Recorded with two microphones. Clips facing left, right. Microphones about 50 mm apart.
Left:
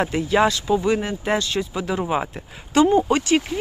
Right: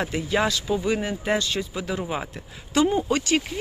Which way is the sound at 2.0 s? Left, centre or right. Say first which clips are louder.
Left 9 dB; left.